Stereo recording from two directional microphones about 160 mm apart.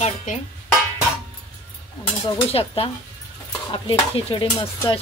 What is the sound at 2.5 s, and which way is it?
Stir, 35° left (ahead or behind).